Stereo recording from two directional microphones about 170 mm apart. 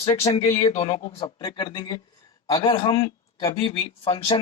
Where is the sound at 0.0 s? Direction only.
40° left (ahead or behind).